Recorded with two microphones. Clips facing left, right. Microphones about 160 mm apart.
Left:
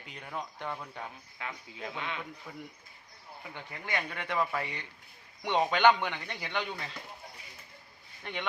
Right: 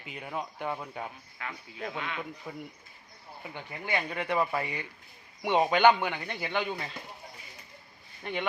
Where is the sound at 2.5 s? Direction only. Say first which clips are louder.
Right 4 dB; 20° right (ahead or behind).